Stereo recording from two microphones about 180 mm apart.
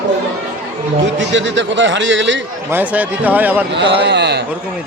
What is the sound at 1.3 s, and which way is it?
A man's voice, 90° right.